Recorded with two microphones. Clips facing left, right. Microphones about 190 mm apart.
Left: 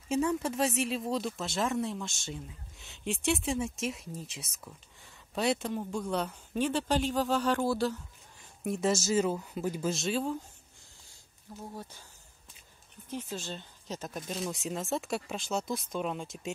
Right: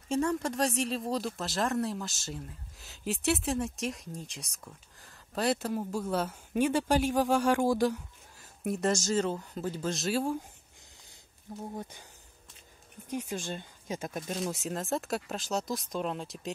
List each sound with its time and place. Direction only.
0.1 s speech: 5° left (ahead or behind); by 8.5 s 15° right (ahead or behind)
8.6 s speech: centre (ahead or behind)
11.7 s speech: 20° right (ahead or behind)
13.1 s speech: 15° right (ahead or behind)